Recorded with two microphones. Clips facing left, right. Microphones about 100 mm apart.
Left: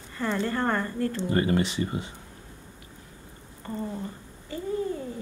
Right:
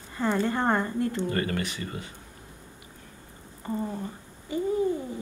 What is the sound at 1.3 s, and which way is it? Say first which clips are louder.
Speech: left 5 dB; 25° left (ahead or behind).